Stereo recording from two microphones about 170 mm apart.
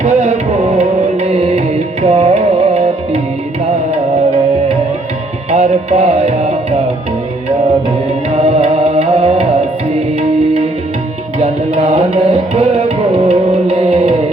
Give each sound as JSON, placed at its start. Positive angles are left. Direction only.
{"t": 0.0, "sound": "music", "side_deg": -40}
{"t": 5.5, "sound": "music", "side_deg": -40}
{"t": 8.3, "sound": "music", "side_deg": -40}
{"t": 11.3, "sound": "music", "side_deg": -40}